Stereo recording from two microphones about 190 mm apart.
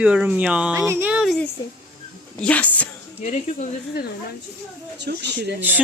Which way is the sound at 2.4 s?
5° left (ahead or behind).